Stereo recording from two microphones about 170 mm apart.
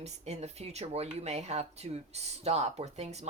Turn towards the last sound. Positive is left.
turn(degrees=-40)  # may be behind; listen again after turning